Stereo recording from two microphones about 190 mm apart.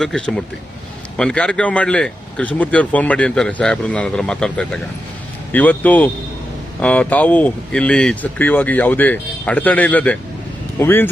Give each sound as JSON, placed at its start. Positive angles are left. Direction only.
{"t": 0.0, "sound": "speech", "side_deg": 5}